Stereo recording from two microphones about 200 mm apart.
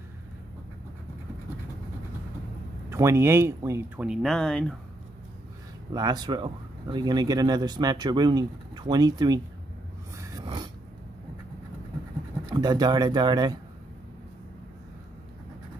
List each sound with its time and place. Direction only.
2.9 s speech: 15° right (ahead or behind); by 4.7 s 5° left (ahead or behind)
5.9 s speech: 20° right (ahead or behind)
10.1 s dog: 15° right (ahead or behind)
12.4 s speech: 20° right (ahead or behind)